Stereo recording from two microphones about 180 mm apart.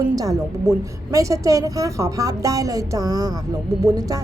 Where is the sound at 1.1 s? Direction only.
20° right (ahead or behind).